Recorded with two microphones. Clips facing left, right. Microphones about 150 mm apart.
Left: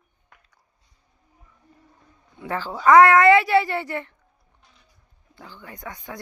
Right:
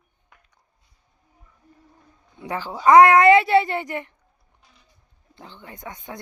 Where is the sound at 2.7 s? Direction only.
20° right (ahead or behind).